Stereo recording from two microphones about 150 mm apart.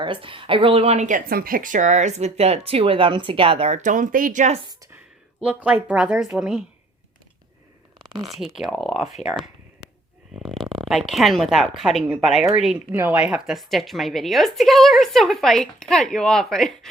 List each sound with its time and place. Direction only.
0.0 s speech: 35° right (ahead or behind); by 4.6 s 55° right (ahead or behind)
4.6 s a woman's voice: 25° right (ahead or behind)
5.4 s speech: 10° right (ahead or behind)
7.9 s a sound: 25° right (ahead or behind)
8.4 s a woman's voice: centre (ahead or behind)
10.8 s a woman's voice: centre (ahead or behind)